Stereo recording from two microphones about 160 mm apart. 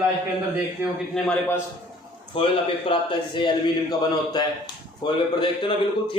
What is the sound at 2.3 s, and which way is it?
A man's voice, 35° left (ahead or behind).